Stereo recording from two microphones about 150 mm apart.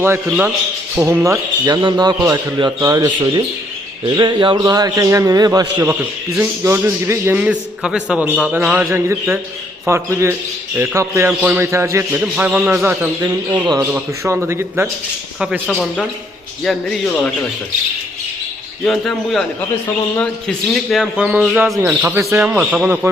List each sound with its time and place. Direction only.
0.0 s a man's voice: 15° right (ahead or behind)
13.5 s a man's voice: 30° right (ahead or behind)
13.9 s a man's voice: 15° right (ahead or behind)
15.4 s speech: 5° right (ahead or behind)
18.9 s speech: centre (ahead or behind)
20.9 s speech: 5° right (ahead or behind)
21.8 s a man's voice: 15° right (ahead or behind)